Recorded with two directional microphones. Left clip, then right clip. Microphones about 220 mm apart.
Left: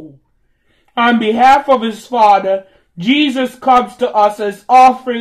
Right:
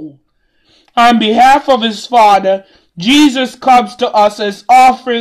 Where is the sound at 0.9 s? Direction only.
45° right (ahead or behind).